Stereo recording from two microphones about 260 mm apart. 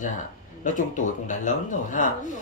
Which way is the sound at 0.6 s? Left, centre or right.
Left.